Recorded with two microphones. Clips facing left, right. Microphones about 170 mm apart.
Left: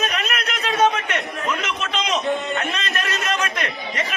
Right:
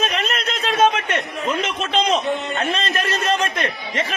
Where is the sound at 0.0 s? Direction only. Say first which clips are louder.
Right 2 dB; 30° right (ahead or behind).